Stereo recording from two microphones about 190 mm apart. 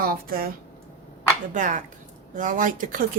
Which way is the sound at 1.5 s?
40° right (ahead or behind).